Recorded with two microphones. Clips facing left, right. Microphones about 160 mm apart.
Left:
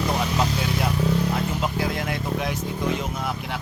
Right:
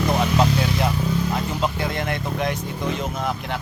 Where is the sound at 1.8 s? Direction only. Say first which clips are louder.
Right 1 dB; 5° left (ahead or behind).